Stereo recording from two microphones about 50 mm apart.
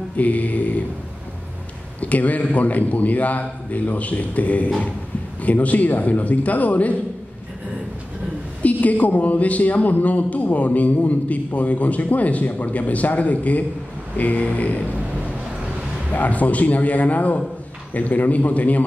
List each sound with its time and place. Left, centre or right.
0.2 s speech: left
2.0 s speech: left
8.6 s speech: left
16.1 s speech: left